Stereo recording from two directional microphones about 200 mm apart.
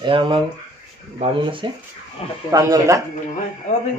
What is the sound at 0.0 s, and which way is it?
Speech, 25° right (ahead or behind).